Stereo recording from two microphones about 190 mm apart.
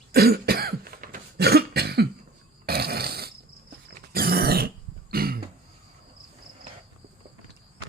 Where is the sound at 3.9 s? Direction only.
50° right (ahead or behind).